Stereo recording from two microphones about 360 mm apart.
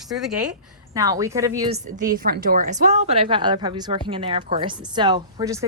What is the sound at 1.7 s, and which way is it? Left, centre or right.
A woman's voice, right.